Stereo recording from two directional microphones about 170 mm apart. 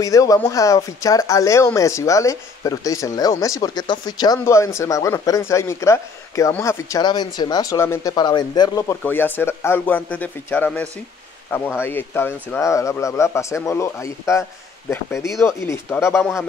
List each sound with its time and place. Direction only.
0.0 s speech: 20° left (ahead or behind)